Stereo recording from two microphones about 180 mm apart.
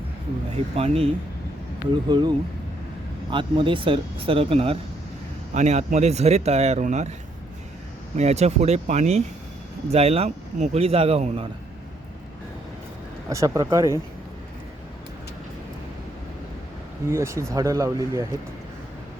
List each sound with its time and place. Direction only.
0.5 s speech: 30° right (ahead or behind)
8.1 s speech: 40° right (ahead or behind)
13.3 s speech: 15° right (ahead or behind)
17.1 s speech: 15° right (ahead or behind)